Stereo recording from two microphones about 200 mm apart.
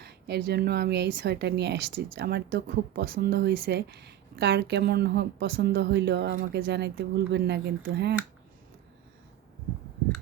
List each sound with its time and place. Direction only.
0.0 s a woman's voice: 55° right (ahead or behind)